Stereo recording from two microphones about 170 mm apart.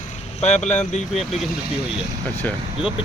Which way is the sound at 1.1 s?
Centre (ahead or behind).